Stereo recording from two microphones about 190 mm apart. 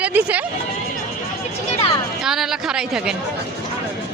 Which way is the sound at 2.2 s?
Centre (ahead or behind).